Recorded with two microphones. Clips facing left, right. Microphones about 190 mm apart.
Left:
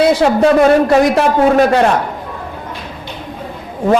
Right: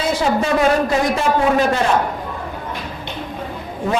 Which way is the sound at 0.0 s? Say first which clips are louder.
Left 8 dB; 65° left (ahead or behind).